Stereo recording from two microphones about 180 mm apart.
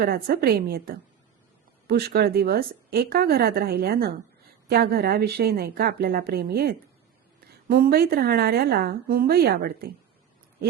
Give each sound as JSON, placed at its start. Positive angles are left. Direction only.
{"t": 0.0, "sound": "a woman's voice", "side_deg": -55}